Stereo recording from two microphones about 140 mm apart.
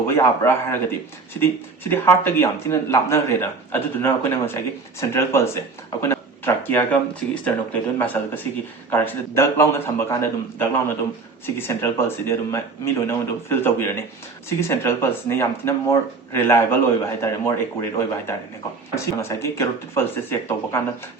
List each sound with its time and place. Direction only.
0.1 s speech: 15° left (ahead or behind)